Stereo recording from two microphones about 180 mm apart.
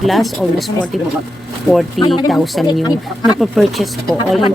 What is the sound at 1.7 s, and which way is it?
Speech, centre (ahead or behind).